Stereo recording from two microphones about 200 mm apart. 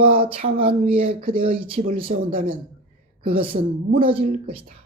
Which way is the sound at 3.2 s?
25° right (ahead or behind).